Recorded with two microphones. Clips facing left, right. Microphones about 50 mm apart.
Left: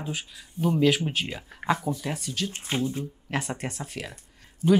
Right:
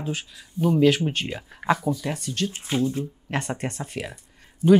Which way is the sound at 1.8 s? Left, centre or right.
Left.